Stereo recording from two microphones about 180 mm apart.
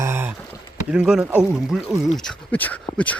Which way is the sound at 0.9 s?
5° right (ahead or behind).